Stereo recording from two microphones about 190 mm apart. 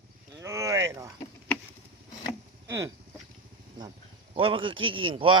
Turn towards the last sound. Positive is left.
turn(degrees=-25)  # may be behind; listen again after turning